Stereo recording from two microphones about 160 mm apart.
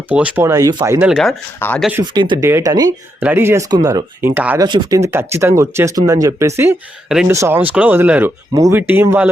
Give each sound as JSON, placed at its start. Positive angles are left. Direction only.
{"t": 0.1, "sound": "speech", "side_deg": -10}
{"t": 0.9, "sound": "speech", "side_deg": -5}
{"t": 1.5, "sound": "speech", "side_deg": 15}
{"t": 2.1, "sound": "speech", "side_deg": -30}
{"t": 2.4, "sound": "speech", "side_deg": -15}
{"t": 4.6, "sound": "speech", "side_deg": -25}